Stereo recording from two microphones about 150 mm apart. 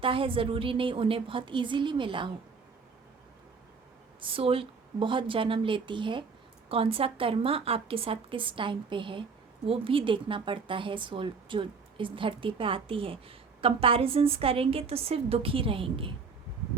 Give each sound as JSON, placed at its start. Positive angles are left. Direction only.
{"t": 0.0, "sound": "speech", "side_deg": -35}
{"t": 4.2, "sound": "speech", "side_deg": -35}